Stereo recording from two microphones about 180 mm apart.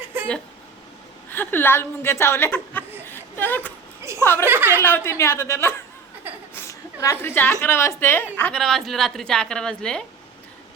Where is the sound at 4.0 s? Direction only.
15° right (ahead or behind).